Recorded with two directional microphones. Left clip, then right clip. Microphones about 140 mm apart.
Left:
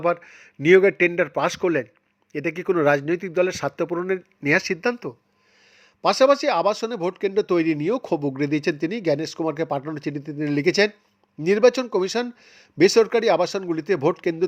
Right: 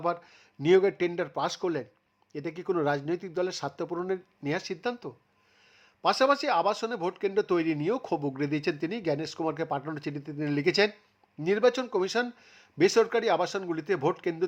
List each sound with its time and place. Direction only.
0.6 s speech: 20° left (ahead or behind)
4.4 s speech: 30° left (ahead or behind)